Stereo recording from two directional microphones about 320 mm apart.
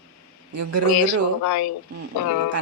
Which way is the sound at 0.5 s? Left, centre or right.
Right.